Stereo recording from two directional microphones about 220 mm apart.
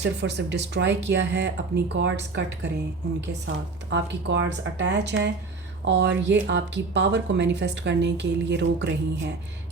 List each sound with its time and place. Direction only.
0.0 s speech: 50° right (ahead or behind)